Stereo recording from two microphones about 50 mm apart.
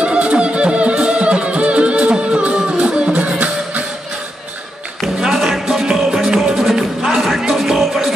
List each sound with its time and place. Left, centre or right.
0.0 s music: right
5.0 s music: centre